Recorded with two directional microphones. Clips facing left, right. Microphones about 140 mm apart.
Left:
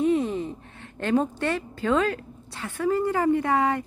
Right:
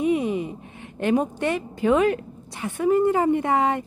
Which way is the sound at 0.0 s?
10° right (ahead or behind).